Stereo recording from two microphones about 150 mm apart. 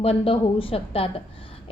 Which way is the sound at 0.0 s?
40° left (ahead or behind).